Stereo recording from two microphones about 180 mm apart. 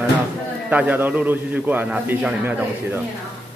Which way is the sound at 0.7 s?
10° right (ahead or behind).